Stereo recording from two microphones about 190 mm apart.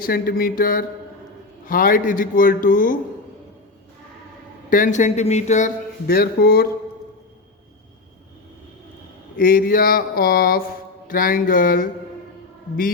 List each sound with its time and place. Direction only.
0.0 s a man's voice: 50° left (ahead or behind)
4.7 s speech: 40° left (ahead or behind)
9.3 s a man's voice: 50° left (ahead or behind)